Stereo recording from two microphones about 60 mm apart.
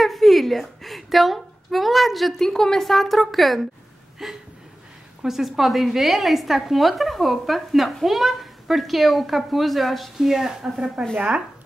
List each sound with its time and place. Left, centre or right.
0.0 s a woman's voice: centre
11.1 s speech: right